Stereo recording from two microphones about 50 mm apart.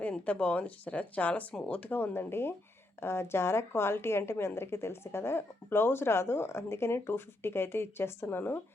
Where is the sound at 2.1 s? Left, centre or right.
Left.